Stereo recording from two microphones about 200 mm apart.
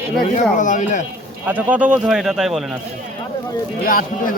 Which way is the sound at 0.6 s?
40° left (ahead or behind).